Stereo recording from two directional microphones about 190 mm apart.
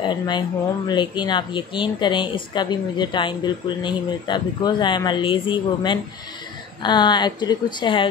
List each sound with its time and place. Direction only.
0.0 s speech: 25° left (ahead or behind)